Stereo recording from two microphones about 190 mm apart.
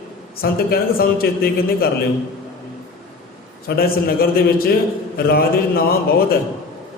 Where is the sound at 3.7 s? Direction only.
55° left (ahead or behind).